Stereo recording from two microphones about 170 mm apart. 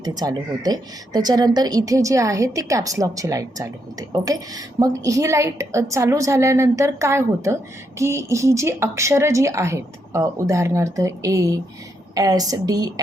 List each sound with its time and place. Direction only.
0.0 s a woman's voice: 25° right (ahead or behind)